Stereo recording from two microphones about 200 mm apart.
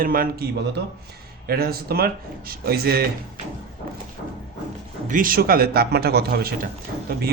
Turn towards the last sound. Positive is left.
turn(degrees=-50)  # may be behind; listen again after turning